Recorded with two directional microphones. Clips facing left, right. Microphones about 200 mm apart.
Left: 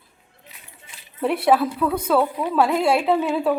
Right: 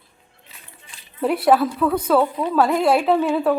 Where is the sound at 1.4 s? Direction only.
5° left (ahead or behind).